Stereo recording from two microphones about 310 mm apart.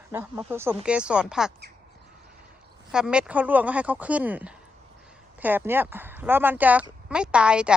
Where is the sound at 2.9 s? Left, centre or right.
Centre.